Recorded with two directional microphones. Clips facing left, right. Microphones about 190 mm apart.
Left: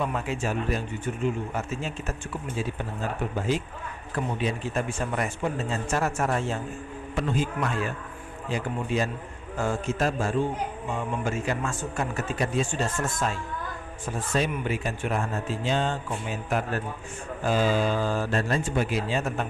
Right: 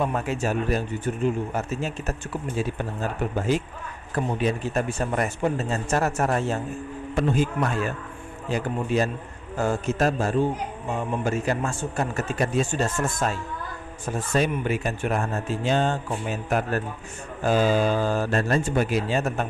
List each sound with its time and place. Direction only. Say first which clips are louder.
0.0 s speech: right 3 dB; 40° right (ahead or behind)
3.3 s speech: right 4 dB; 45° right (ahead or behind)
8.5 s speech: right 3 dB; 40° right (ahead or behind)